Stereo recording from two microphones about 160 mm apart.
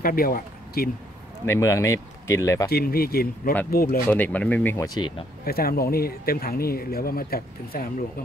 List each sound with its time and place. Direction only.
0.0 s speech: 65° left (ahead or behind)
1.4 s speech: 15° left (ahead or behind)
2.7 s speech: 70° left (ahead or behind)
4.1 s speech: 10° left (ahead or behind)
4.7 s speech: 25° left (ahead or behind)
5.4 s speech: 70° left (ahead or behind)